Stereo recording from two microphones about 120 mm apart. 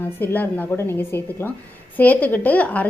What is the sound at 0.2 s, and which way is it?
A woman's voice, 15° left (ahead or behind).